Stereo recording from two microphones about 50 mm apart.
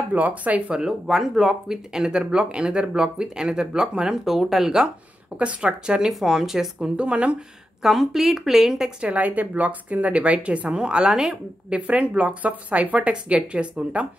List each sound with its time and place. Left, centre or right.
0.1 s speech: right
0.7 s speech: centre
5.4 s a woman's voice: right
7.0 s a woman's voice: right
7.8 s speech: centre
9.0 s a woman's voice: right; by 11.3 s centre
11.7 s a woman's voice: right